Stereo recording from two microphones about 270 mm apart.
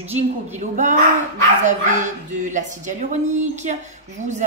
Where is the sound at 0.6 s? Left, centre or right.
Right.